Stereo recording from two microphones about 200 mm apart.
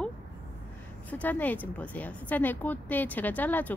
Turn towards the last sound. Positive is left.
turn(degrees=10)  # may be behind; listen again after turning